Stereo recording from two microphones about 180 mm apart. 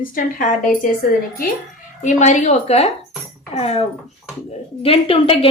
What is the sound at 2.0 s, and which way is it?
A woman's voice, 40° left (ahead or behind).